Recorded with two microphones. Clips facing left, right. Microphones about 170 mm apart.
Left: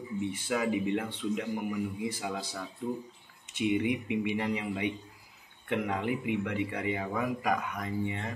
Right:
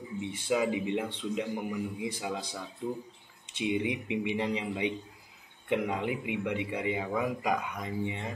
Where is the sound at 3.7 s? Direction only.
15° right (ahead or behind).